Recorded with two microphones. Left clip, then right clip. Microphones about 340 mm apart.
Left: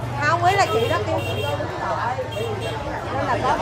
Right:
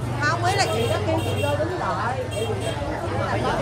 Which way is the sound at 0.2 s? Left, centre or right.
Left.